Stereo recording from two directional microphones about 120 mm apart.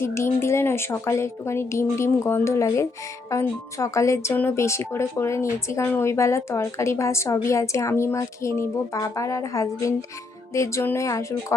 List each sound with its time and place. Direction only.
0.0 s speech: 20° left (ahead or behind)